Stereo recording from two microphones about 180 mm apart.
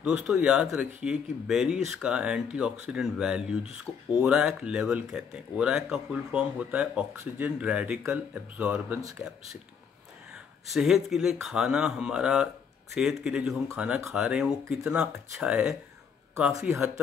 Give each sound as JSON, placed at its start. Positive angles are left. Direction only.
{"t": 0.0, "sound": "speech", "side_deg": -5}
{"t": 10.3, "sound": "speech", "side_deg": -5}
{"t": 14.6, "sound": "speech", "side_deg": -15}